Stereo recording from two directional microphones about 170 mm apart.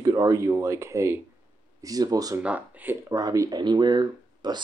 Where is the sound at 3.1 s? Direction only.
20° right (ahead or behind).